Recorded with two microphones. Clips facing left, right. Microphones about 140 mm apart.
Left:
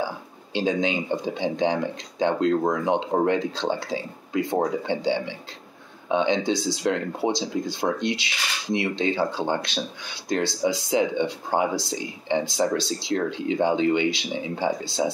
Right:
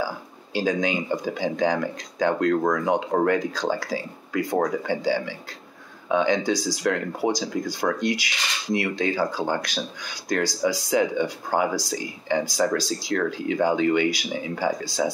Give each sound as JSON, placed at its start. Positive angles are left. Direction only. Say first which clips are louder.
{"t": 0.6, "sound": "speech", "louder": "even", "side_deg": 25}